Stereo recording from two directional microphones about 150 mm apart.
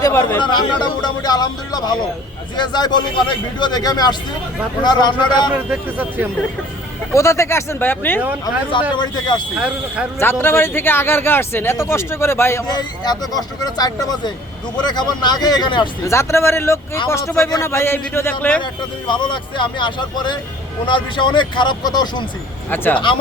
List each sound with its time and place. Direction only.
0.0 s speech: 20° left (ahead or behind)
0.3 s speech: 30° left (ahead or behind)
5.5 s speech: 10° right (ahead or behind)
7.1 s speech: 20° left (ahead or behind)
9.0 s speech: 30° left (ahead or behind)
9.6 s speech: 5° right (ahead or behind)
10.2 s speech: 15° left (ahead or behind)
16.0 s speech: 20° left (ahead or behind)
18.6 s speech: 30° left (ahead or behind)
22.7 s speech: 15° left (ahead or behind)